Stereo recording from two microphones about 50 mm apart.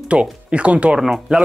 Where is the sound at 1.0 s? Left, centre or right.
Centre.